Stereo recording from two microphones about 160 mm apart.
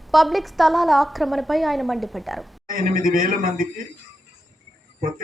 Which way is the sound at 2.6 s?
60° right (ahead or behind).